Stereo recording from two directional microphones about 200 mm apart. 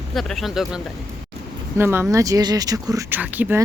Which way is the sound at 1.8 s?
10° right (ahead or behind).